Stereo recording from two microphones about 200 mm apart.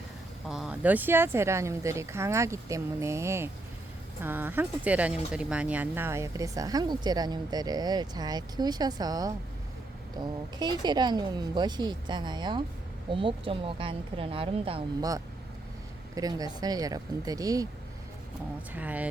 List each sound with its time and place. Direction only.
0.4 s speech: centre (ahead or behind); by 17.7 s 15° right (ahead or behind)
18.7 s speech: 10° right (ahead or behind)